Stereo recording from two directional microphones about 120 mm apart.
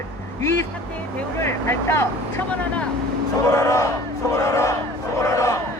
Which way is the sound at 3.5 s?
30° left (ahead or behind).